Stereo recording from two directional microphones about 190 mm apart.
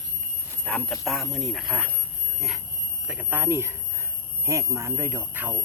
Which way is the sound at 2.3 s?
Centre (ahead or behind).